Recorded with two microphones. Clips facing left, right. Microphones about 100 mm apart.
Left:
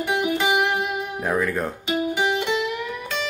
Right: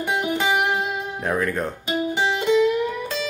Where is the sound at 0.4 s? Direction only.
15° left (ahead or behind).